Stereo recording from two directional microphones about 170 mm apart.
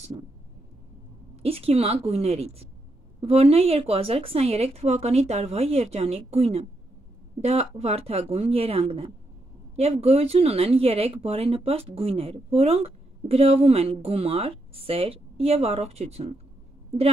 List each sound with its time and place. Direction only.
1.3 s speech: 35° right (ahead or behind)